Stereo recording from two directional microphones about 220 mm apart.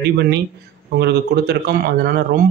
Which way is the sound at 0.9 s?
45° right (ahead or behind).